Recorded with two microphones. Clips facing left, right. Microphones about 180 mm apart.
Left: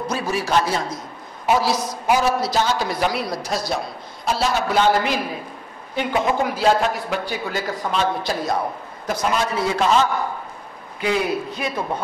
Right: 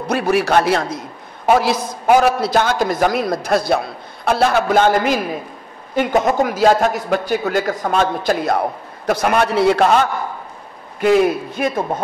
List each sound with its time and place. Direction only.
0.1 s a man's voice: 65° right (ahead or behind)
9.0 s a man's voice: 65° right (ahead or behind)